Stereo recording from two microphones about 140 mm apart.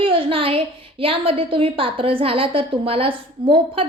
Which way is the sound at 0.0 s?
40° right (ahead or behind).